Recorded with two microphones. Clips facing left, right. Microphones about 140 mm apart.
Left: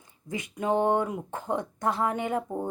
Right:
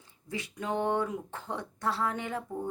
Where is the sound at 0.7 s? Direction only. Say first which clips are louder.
Left 5 dB; 15° left (ahead or behind).